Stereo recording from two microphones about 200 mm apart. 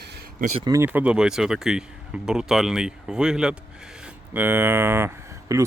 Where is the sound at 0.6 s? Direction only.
20° right (ahead or behind).